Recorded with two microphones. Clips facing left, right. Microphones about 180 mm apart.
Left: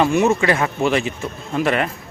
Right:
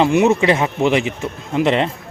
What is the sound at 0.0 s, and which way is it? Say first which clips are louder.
A man's voice: right 2 dB; 20° right (ahead or behind).